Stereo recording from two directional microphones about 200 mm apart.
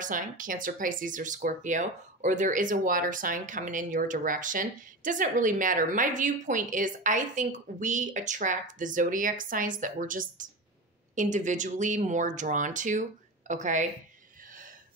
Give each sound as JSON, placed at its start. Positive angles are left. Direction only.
{"t": 0.0, "sound": "speech", "side_deg": -40}